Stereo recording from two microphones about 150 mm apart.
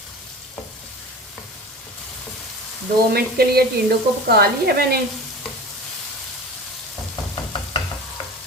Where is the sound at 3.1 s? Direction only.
90° right.